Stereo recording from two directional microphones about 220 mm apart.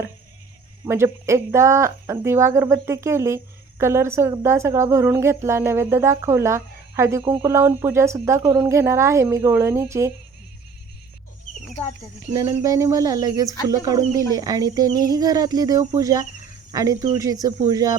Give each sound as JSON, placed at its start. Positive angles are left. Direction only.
{"t": 0.9, "sound": "speech", "side_deg": -10}
{"t": 12.3, "sound": "speech", "side_deg": -15}